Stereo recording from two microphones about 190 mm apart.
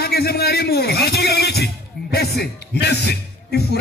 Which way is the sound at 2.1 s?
55° left (ahead or behind).